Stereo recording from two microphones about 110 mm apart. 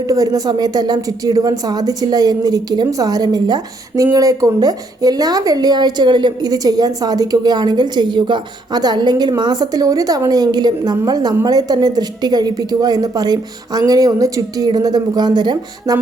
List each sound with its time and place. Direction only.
0.0 s speech: 35° right (ahead or behind)